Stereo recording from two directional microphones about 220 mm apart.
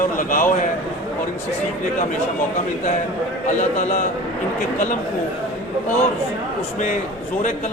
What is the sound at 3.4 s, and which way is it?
Speech, 30° left (ahead or behind).